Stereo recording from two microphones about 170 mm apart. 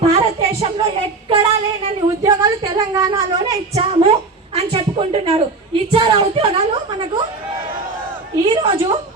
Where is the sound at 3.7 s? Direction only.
35° right (ahead or behind).